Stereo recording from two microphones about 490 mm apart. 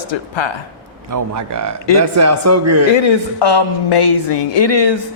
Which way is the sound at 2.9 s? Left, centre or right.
Left.